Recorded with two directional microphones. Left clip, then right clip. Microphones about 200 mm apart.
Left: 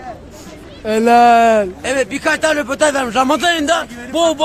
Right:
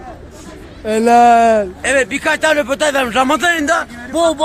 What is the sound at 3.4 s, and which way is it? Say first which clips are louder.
Speech: right 1 dB; 5° left (ahead or behind).